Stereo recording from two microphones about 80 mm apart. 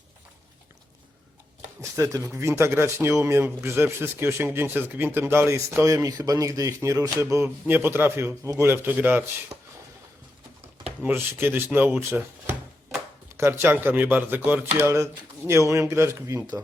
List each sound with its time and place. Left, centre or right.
1.8 s speech: right
11.0 s speech: right
13.3 s speech: right
14.9 s speech: right